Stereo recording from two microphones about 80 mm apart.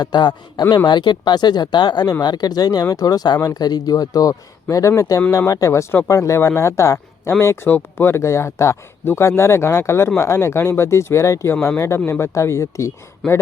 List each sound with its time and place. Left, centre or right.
0.0 s speech: left